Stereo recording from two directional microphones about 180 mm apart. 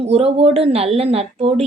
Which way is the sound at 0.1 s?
35° right (ahead or behind).